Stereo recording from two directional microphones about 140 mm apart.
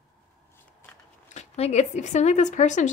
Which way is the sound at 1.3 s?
55° left (ahead or behind).